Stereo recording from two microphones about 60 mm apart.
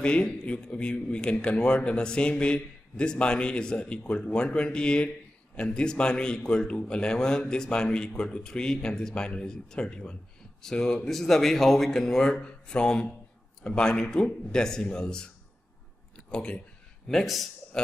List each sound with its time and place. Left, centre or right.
0.0 s speech: centre
17.1 s speech: centre